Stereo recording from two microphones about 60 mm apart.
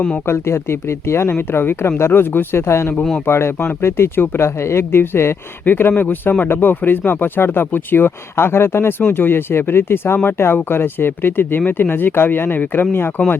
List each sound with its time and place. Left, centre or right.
0.3 s speech: left
2.6 s speech: left